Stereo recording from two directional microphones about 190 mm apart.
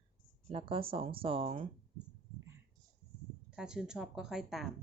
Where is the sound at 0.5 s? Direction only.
30° right (ahead or behind).